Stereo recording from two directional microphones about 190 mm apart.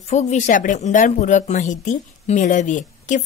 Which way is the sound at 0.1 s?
40° left (ahead or behind).